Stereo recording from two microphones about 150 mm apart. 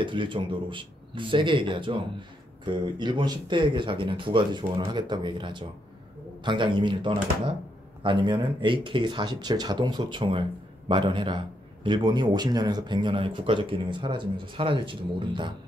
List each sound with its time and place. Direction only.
0.0 s a man's voice: 35° right (ahead or behind)